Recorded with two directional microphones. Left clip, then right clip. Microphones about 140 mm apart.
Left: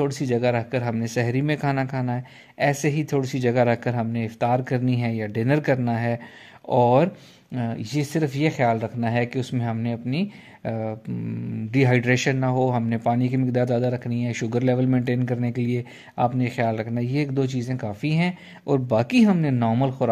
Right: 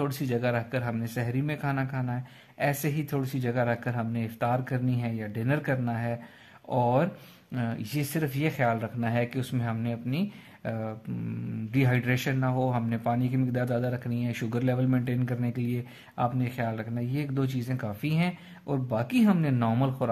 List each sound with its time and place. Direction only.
0.0 s speech: 30° left (ahead or behind); by 2.7 s 50° left (ahead or behind)
2.7 s speech: 40° left (ahead or behind)
7.5 s speech: 30° left (ahead or behind); by 17.4 s 45° left (ahead or behind)
17.4 s speech: 30° left (ahead or behind)
18.7 s speech: 50° left (ahead or behind)
19.3 s speech: 25° left (ahead or behind)